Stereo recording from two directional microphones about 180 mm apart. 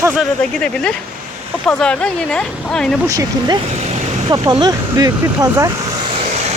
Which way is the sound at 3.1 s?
20° right (ahead or behind).